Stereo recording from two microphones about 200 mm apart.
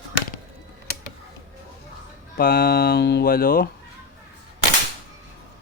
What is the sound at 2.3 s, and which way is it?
Speech, 45° left (ahead or behind).